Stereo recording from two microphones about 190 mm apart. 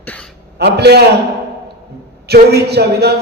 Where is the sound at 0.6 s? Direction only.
60° right (ahead or behind).